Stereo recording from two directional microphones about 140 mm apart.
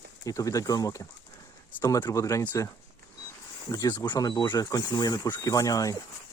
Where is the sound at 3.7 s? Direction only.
25° left (ahead or behind).